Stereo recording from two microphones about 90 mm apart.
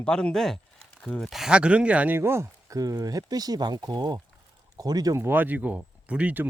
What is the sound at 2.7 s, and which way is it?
Speech, 40° right (ahead or behind).